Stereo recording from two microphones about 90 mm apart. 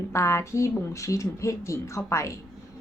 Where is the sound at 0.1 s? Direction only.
35° left (ahead or behind).